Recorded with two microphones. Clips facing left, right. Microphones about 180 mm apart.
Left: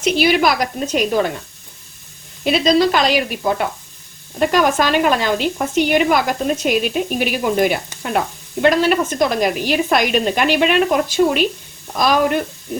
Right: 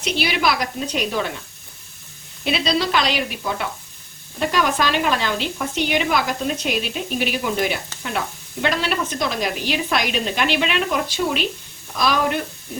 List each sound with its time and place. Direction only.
0.0 s a woman's voice: 50° left (ahead or behind)
2.4 s a woman's voice: 45° left (ahead or behind)